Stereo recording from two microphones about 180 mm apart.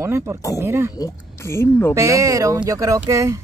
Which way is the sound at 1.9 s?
15° right (ahead or behind).